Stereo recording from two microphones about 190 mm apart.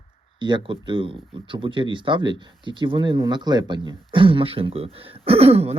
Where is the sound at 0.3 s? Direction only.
25° right (ahead or behind).